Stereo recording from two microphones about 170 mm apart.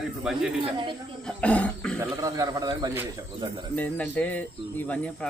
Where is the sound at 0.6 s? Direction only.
30° right (ahead or behind).